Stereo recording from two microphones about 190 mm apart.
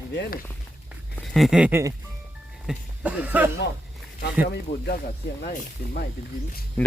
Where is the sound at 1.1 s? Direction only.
Centre (ahead or behind).